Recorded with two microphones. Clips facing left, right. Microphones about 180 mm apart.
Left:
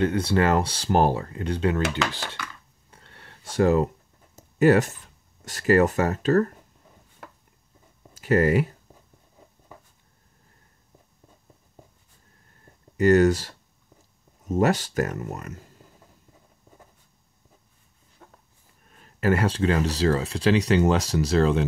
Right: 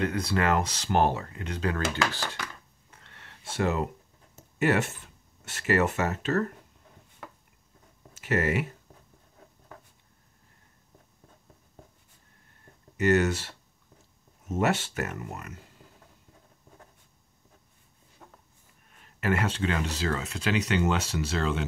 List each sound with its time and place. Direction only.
0.0 s speech: 30° left (ahead or behind)
2.9 s a sound: 35° left (ahead or behind)
5.4 s speech: 35° left (ahead or behind)
8.1 s speech: 35° left (ahead or behind)
12.9 s speech: 35° left (ahead or behind)
19.1 s speech: 35° left (ahead or behind)